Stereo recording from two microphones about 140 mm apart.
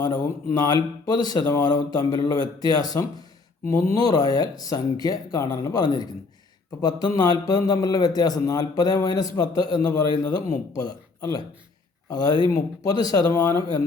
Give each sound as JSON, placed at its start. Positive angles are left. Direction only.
{"t": 0.0, "sound": "a man's voice", "side_deg": 25}